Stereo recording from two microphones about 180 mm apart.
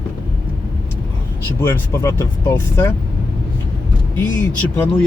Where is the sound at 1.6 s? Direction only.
15° left (ahead or behind).